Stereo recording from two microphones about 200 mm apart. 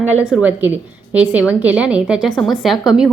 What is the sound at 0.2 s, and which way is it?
A woman's voice, 5° right (ahead or behind).